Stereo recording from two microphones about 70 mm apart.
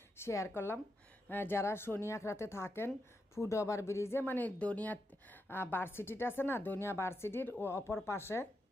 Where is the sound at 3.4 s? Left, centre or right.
Left.